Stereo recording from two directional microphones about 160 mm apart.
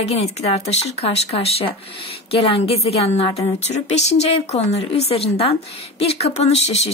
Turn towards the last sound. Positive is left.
turn(degrees=40)  # may be behind; listen again after turning